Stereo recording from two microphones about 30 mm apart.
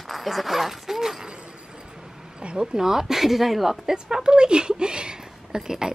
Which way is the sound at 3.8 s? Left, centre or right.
Right.